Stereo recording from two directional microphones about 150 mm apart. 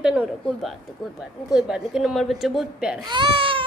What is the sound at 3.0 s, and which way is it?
Speech, 35° right (ahead or behind).